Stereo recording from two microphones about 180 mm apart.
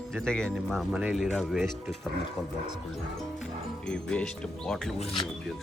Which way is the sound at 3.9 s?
5° left (ahead or behind).